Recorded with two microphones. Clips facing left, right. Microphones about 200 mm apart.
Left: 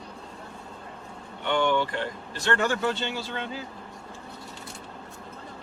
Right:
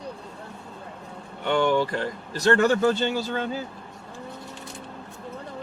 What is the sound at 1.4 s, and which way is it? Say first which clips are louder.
Speech: right 3 dB; 40° right (ahead or behind).